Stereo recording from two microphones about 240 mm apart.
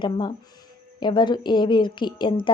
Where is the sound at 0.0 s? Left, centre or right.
Centre.